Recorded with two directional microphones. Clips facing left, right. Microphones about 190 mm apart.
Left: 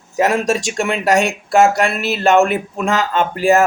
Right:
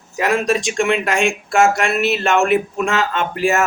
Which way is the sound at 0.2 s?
45° left (ahead or behind).